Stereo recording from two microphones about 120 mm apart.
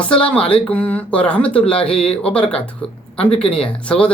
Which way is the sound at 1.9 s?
50° left (ahead or behind).